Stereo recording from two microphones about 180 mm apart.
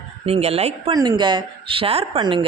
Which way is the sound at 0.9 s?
25° right (ahead or behind).